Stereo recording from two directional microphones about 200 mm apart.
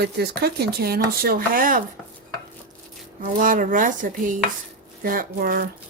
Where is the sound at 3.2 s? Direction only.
45° right (ahead or behind).